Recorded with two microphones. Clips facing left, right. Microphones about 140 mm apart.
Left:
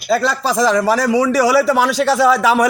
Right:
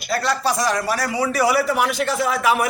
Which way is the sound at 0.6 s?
90° left.